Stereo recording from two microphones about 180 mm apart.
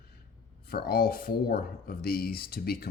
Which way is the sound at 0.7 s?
55° left (ahead or behind).